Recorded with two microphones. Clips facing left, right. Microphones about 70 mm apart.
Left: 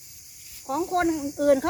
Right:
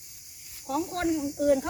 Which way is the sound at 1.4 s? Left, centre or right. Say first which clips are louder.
Left 4 dB; left.